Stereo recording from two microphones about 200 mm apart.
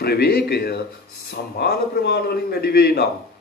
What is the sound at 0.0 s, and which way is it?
A man's voice, 50° left (ahead or behind).